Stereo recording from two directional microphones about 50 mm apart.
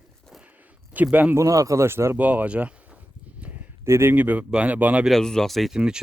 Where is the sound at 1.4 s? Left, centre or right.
Right.